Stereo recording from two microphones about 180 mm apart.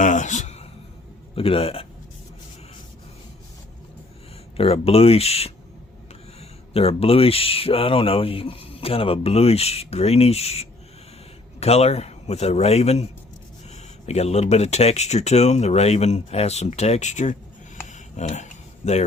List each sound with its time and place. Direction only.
0.0 s a man's voice: 45° left (ahead or behind)
4.5 s speech: 35° left (ahead or behind)
6.7 s speech: 35° left (ahead or behind)
14.1 s speech: 35° left (ahead or behind)
17.8 s a sound: 40° left (ahead or behind)